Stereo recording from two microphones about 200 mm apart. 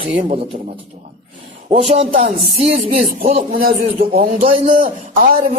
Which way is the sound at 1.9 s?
30° right (ahead or behind).